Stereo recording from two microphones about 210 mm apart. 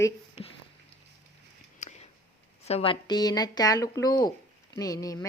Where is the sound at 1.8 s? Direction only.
35° left (ahead or behind).